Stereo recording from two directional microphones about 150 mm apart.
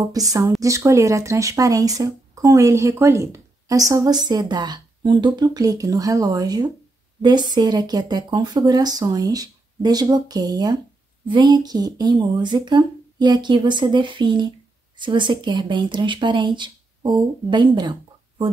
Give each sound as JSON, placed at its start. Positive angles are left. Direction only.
{"t": 0.0, "sound": "speech", "side_deg": -25}